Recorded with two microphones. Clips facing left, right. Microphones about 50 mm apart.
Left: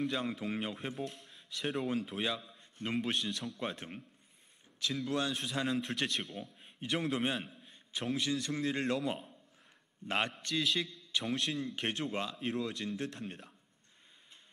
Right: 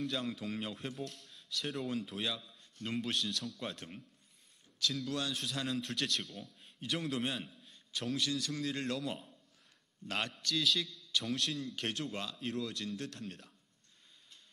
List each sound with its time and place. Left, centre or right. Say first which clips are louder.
0.0 s a man's voice: left 3 dB; left